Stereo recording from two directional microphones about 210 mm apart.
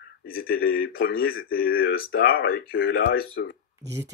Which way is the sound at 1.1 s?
75° left (ahead or behind).